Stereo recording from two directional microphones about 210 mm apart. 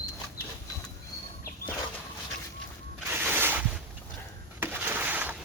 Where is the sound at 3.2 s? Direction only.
10° right (ahead or behind).